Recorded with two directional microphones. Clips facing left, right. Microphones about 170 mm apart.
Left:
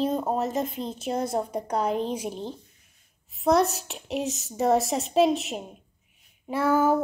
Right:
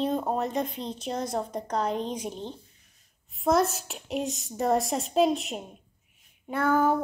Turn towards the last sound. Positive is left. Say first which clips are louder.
# left 2 dB
turn(degrees=5)  # may be behind; listen again after turning